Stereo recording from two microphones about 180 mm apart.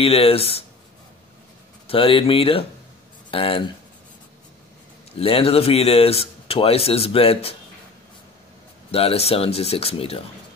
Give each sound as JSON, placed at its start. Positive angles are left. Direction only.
{"t": 0.0, "sound": "speech", "side_deg": 30}
{"t": 1.9, "sound": "speech", "side_deg": 30}
{"t": 5.2, "sound": "speech", "side_deg": 30}
{"t": 8.9, "sound": "speech", "side_deg": 35}